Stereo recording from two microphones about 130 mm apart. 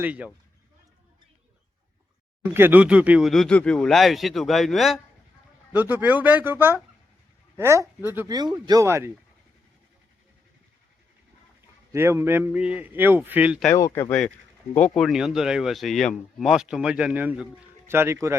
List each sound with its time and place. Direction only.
0.0 s speech: 10° right (ahead or behind)
2.5 s speech: 15° right (ahead or behind); by 4.9 s centre (ahead or behind)
5.7 s speech: 15° right (ahead or behind)
8.3 s speech: 30° right (ahead or behind)
11.9 s speech: 20° right (ahead or behind)
13.7 s speech: 25° left (ahead or behind)
14.1 s speech: 10° left (ahead or behind)
14.9 s speech: centre (ahead or behind); by 18.3 s 20° right (ahead or behind)